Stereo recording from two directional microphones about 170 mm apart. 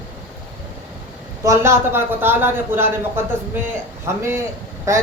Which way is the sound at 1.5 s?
15° right (ahead or behind).